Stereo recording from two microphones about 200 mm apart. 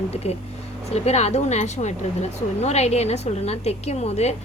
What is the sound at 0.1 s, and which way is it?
A woman's voice, 30° left (ahead or behind).